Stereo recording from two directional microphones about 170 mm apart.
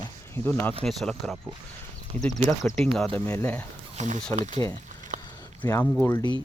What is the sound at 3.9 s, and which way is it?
Speech, 45° right (ahead or behind).